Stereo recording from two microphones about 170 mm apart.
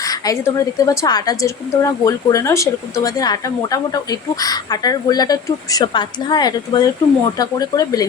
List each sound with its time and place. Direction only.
0.0 s a woman's voice: 20° left (ahead or behind)